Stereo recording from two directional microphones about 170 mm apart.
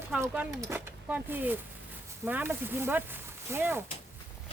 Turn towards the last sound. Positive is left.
turn(degrees=-15)  # may be behind; listen again after turning